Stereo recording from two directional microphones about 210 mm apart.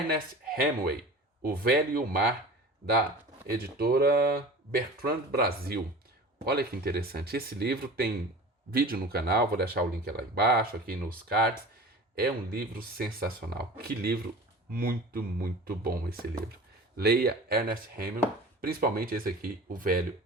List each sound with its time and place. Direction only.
0.1 s speech: 45° right (ahead or behind)